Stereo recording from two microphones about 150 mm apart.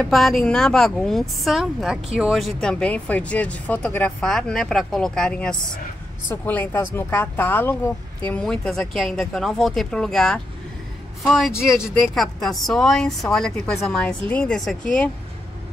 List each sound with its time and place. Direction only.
0.0 s speech: centre (ahead or behind)